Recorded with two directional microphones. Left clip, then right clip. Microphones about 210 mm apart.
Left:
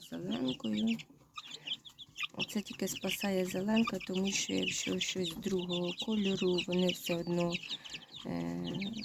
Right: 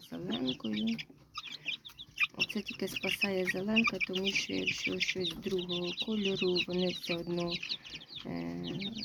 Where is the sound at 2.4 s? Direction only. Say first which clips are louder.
Right 3 dB; 10° left (ahead or behind).